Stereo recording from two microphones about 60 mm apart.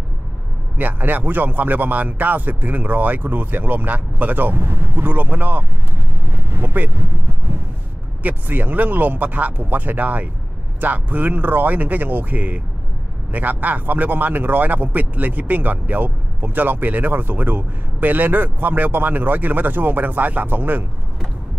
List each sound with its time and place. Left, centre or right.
0.7 s speech: right
8.2 s speech: right